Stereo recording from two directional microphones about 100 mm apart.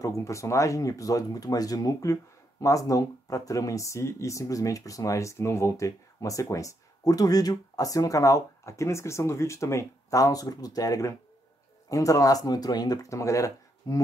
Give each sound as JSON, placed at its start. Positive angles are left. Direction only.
{"t": 0.0, "sound": "speech", "side_deg": 30}